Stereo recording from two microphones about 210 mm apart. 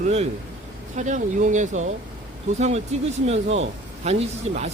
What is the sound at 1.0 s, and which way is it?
Speech, 35° right (ahead or behind).